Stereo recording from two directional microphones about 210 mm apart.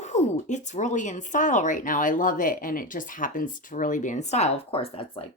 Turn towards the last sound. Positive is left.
turn(degrees=25)  # may be behind; listen again after turning